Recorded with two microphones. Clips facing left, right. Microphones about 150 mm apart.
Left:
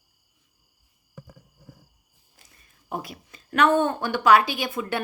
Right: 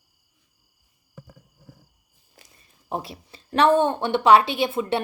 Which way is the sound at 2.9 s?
30° right (ahead or behind).